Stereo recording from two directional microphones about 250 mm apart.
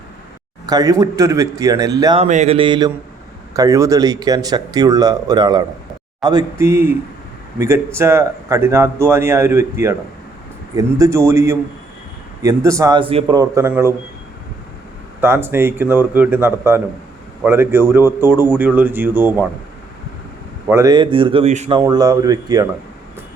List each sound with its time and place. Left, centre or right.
0.7 s speech: centre
2.2 s speech: right; by 6.9 s centre
7.9 s speech: centre
15.2 s speech: centre
20.7 s speech: centre
21.8 s speech: centre